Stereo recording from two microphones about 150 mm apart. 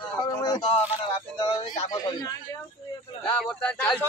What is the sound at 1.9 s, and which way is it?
Speech, 25° left (ahead or behind).